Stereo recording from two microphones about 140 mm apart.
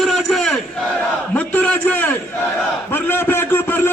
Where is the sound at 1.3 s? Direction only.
10° left (ahead or behind).